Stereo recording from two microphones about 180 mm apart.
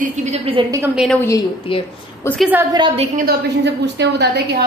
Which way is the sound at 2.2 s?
15° left (ahead or behind).